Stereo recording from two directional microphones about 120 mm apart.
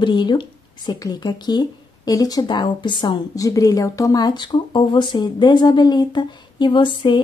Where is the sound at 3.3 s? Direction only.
30° left (ahead or behind).